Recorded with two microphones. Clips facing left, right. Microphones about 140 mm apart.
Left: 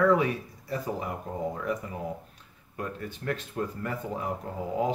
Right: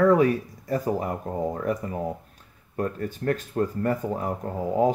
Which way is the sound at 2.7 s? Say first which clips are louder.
Right 7 dB; 45° right (ahead or behind).